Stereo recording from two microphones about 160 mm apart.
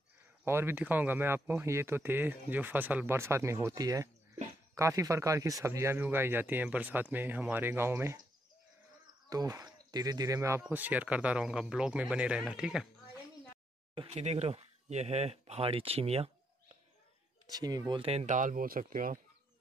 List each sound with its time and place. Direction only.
0.5 s speech: 15° right (ahead or behind)
9.3 s speech: 20° right (ahead or behind); by 12.8 s 5° right (ahead or behind)
13.9 s speech: 40° right (ahead or behind)
17.5 s speech: 25° right (ahead or behind); by 19.1 s 55° right (ahead or behind)